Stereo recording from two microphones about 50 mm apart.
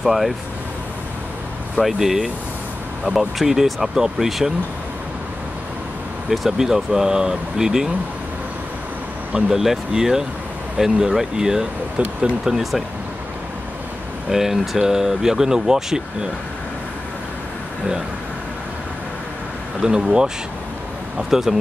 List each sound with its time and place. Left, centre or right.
0.0 s speech: centre
1.8 s speech: centre
6.3 s speech: centre
9.5 s speech: centre
12.0 s speech: right
12.4 s speech: centre
14.3 s speech: centre
19.8 s speech: centre
21.3 s speech: centre